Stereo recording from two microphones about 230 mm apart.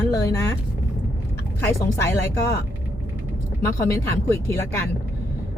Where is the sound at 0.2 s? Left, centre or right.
Centre.